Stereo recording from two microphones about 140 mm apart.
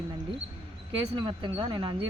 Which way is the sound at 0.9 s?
35° right (ahead or behind).